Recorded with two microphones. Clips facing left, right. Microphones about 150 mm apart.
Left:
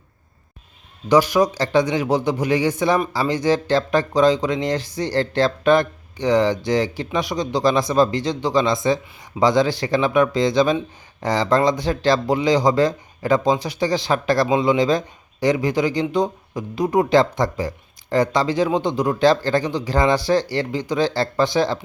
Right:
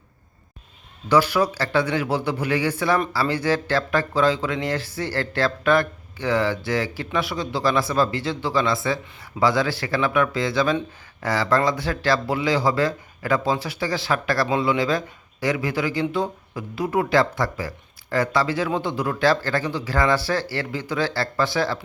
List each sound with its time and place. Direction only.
1.0 s speech: 15° left (ahead or behind)